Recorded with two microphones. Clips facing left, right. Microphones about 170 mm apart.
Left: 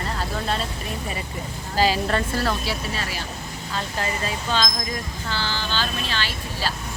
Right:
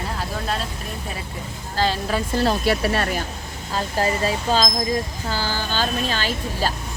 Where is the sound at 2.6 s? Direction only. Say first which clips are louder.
Right 8 dB; 60° right (ahead or behind).